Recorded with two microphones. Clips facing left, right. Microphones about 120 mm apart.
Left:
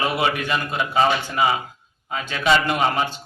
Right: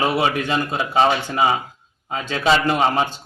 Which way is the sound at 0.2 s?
30° right (ahead or behind).